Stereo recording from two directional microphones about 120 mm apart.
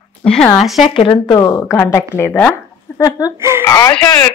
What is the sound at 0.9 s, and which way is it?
Speech, 40° left (ahead or behind).